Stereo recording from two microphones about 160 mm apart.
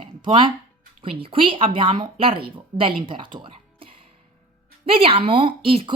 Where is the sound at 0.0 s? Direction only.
30° right (ahead or behind).